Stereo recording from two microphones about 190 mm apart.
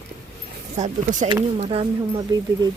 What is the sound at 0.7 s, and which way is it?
Speech, 40° right (ahead or behind).